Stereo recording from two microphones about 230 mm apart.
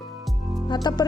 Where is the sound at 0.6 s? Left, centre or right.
Centre.